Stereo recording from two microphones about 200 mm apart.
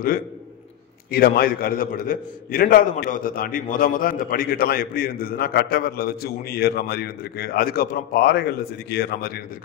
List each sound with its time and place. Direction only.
1.1 s a man's voice: 50° left (ahead or behind)